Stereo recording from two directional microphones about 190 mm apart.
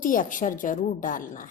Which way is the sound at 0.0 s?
45° left (ahead or behind).